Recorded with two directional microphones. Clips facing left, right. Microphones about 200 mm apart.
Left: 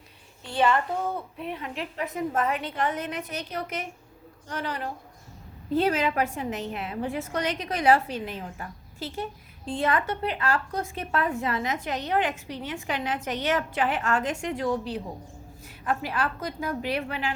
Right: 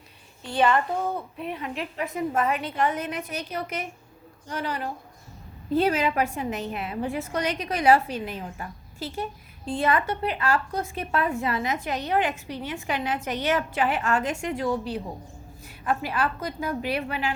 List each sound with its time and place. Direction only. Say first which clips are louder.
0.4 s a woman's voice: right 1 dB; 15° right (ahead or behind)